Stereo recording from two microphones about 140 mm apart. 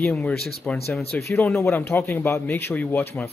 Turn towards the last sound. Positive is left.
turn(degrees=15)  # may be behind; listen again after turning